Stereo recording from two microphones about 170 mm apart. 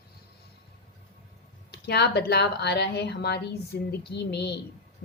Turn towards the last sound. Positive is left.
turn(degrees=80)